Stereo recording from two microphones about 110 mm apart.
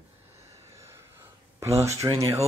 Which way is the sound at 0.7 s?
25° right (ahead or behind).